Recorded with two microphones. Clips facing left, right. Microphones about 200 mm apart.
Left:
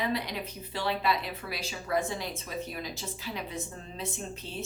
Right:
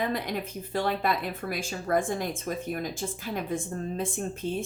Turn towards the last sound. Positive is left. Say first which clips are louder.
# right 7 dB
turn(degrees=-50)  # may be behind; listen again after turning